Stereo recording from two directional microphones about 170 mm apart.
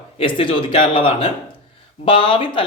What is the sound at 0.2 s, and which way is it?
A man's voice, 30° left (ahead or behind).